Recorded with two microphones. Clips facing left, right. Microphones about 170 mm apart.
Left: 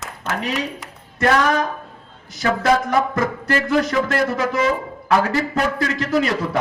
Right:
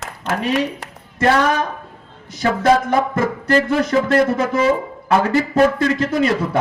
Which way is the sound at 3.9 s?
25° right (ahead or behind).